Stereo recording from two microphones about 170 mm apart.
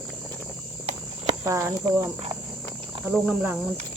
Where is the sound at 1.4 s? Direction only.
15° right (ahead or behind).